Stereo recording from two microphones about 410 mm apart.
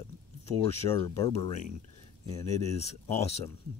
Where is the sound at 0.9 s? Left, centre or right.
Centre.